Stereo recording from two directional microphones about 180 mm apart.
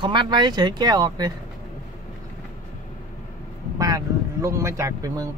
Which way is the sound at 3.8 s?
20° right (ahead or behind).